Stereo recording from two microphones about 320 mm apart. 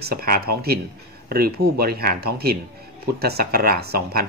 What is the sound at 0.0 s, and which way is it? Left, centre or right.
Speech, right.